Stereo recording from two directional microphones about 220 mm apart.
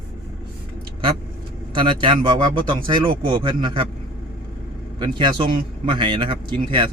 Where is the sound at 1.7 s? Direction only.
25° right (ahead or behind).